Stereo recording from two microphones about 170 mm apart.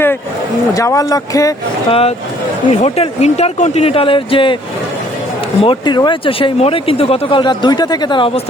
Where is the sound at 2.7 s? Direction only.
35° left (ahead or behind).